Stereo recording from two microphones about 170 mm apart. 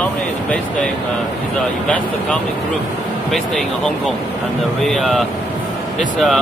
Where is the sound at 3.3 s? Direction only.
Centre (ahead or behind).